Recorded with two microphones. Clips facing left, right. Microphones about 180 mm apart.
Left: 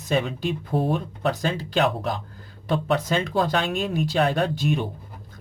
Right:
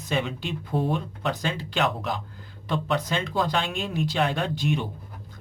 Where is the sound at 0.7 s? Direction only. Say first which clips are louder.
Left 1 dB; 5° left (ahead or behind).